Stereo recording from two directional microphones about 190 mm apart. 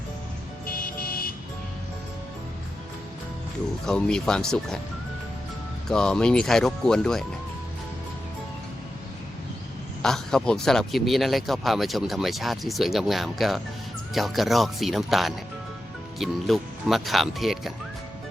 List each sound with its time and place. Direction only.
0.7 s vehicle: 50° left (ahead or behind)
3.8 s speech: 5° left (ahead or behind)
5.9 s speech: 5° left (ahead or behind)
10.0 s speech: 5° left (ahead or behind)